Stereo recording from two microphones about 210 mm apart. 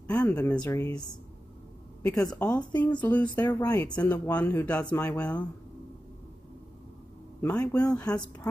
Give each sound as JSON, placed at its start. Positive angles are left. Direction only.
{"t": 0.0, "sound": "speech", "side_deg": 5}
{"t": 2.0, "sound": "speech", "side_deg": 15}
{"t": 7.4, "sound": "speech", "side_deg": 15}